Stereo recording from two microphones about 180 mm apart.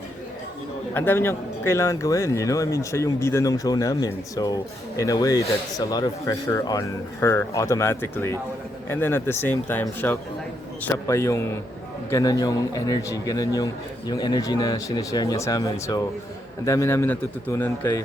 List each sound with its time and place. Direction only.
0.9 s speech: 10° left (ahead or behind)